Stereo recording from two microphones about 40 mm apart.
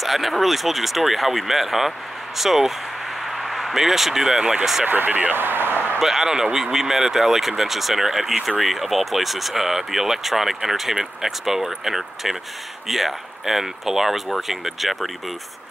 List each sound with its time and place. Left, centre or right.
0.0 s speech: centre
4.8 s speech: right
5.3 s speech: right
5.9 s speech: centre